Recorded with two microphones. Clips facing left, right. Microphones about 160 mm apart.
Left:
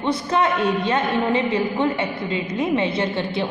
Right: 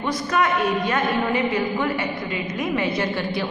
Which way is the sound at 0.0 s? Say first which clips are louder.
Left 2 dB; 30° left (ahead or behind).